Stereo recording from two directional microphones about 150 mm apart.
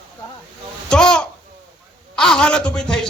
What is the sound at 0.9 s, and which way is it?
A man's voice, 5° left (ahead or behind).